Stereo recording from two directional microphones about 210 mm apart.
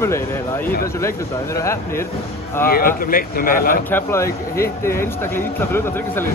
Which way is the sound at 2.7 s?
45° left (ahead or behind).